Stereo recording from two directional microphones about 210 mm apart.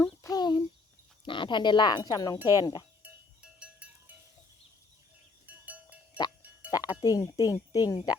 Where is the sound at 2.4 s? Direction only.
10° right (ahead or behind).